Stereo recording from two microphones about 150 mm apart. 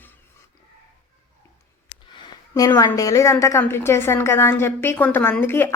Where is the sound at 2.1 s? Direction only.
30° left (ahead or behind).